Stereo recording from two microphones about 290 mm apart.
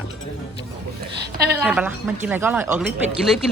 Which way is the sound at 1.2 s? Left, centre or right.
Right.